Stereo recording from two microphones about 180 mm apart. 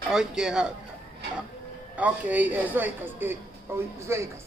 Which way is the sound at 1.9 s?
10° right (ahead or behind).